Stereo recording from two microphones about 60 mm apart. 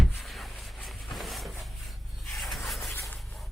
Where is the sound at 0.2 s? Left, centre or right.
Centre.